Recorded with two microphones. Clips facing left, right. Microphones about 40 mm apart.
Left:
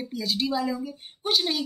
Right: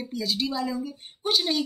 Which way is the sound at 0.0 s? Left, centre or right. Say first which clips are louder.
Even; centre.